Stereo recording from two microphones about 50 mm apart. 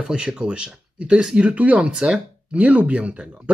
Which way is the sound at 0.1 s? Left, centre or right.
Centre.